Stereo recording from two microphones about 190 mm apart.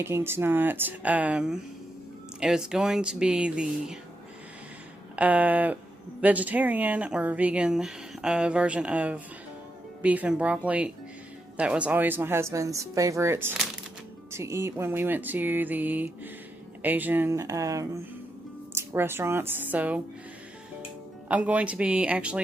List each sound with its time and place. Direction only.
0.0 s speech: 10° right (ahead or behind)
5.1 s speech: 10° right (ahead or behind)
21.2 s speech: 5° right (ahead or behind)